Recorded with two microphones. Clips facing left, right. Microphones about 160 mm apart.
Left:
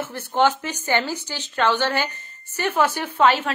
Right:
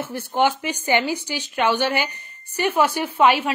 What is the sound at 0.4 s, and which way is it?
A woman's voice, 10° right (ahead or behind).